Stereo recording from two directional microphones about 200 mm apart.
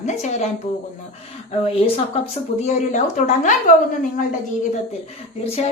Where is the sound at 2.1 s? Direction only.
35° left (ahead or behind).